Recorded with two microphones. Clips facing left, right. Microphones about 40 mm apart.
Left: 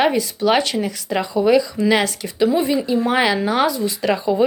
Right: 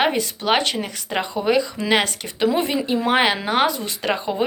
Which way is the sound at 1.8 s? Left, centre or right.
Right.